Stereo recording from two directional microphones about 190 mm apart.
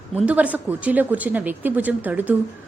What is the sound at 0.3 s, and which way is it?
A woman's voice, 5° right (ahead or behind).